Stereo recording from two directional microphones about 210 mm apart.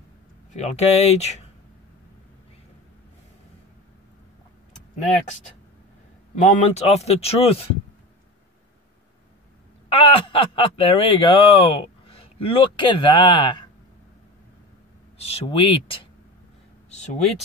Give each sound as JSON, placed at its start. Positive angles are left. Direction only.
{"t": 0.5, "sound": "speech", "side_deg": 30}
{"t": 6.4, "sound": "speech", "side_deg": 35}
{"t": 9.8, "sound": "speech", "side_deg": 25}
{"t": 15.1, "sound": "speech", "side_deg": 30}